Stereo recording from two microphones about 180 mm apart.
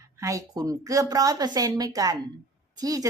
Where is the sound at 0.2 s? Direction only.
15° right (ahead or behind).